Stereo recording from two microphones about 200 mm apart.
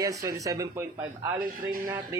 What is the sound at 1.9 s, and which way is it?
Speech, 15° right (ahead or behind).